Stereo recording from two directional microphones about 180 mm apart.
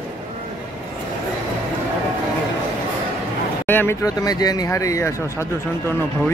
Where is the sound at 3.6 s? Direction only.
10° left (ahead or behind).